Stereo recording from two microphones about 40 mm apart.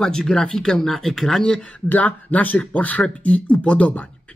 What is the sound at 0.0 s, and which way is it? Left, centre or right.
Speech, centre.